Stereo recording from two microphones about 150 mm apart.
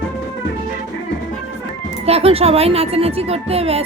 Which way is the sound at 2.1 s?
40° right (ahead or behind).